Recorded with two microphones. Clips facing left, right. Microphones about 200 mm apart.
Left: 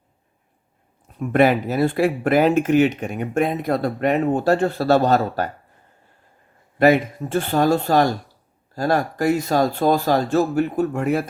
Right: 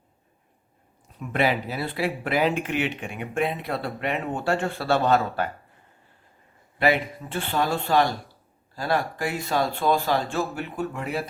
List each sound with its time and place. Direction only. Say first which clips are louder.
1.2 s speech: left 8 dB; 50° left (ahead or behind)
6.7 s speech: left 7 dB; 45° left (ahead or behind)